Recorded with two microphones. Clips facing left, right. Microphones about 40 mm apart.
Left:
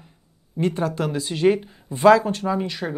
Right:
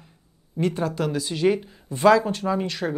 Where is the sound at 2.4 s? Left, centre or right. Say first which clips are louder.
Left 1 dB; centre.